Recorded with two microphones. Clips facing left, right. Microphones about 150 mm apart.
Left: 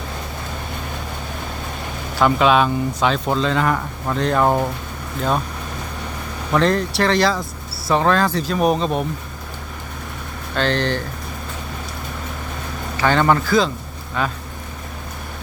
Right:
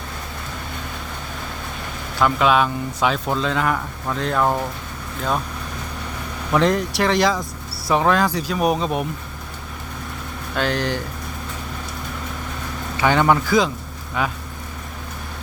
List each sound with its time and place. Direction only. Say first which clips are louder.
2.1 s speech: left 2 dB; centre (ahead or behind)
4.4 s speech: left 3 dB; 20° left (ahead or behind)
6.6 s speech: left 1 dB; 15° right (ahead or behind)
10.5 s speech: left 2 dB; 10° right (ahead or behind)
13.0 s speech: even; 10° right (ahead or behind)